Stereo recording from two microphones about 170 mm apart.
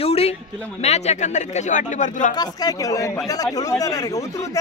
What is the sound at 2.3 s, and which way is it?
A man's voice, 25° left (ahead or behind).